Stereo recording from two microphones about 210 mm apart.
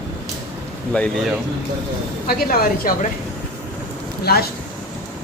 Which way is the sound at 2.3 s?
45° left (ahead or behind).